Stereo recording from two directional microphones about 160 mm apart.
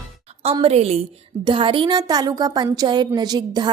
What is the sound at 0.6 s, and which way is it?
A woman's voice, 40° right (ahead or behind).